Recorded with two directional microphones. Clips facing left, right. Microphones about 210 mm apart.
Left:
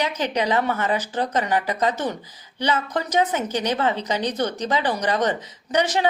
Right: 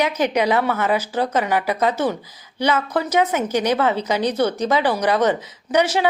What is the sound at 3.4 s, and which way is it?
A woman's voice, 10° right (ahead or behind).